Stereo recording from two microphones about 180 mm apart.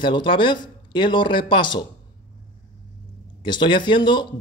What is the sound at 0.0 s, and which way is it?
Speech, 25° left (ahead or behind).